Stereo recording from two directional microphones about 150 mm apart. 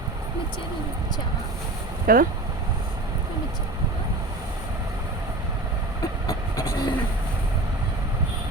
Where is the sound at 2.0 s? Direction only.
70° right (ahead or behind).